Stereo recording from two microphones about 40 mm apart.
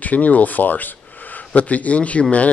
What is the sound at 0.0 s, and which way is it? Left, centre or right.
Speech, left.